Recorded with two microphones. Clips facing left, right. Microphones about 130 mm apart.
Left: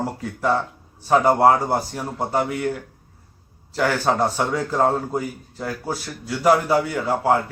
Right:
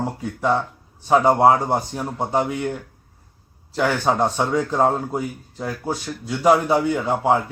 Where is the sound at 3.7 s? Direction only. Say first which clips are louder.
Even; 15° right (ahead or behind).